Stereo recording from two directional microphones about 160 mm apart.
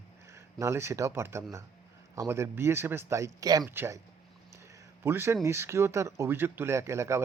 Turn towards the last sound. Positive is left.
turn(degrees=-15)  # may be behind; listen again after turning